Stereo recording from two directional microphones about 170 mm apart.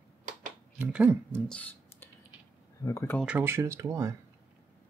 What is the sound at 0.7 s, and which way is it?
Speech, 10° right (ahead or behind).